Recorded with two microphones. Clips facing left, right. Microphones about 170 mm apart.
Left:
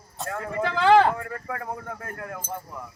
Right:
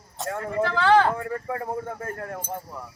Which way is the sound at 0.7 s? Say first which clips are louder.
Left 2 dB; 20° left (ahead or behind).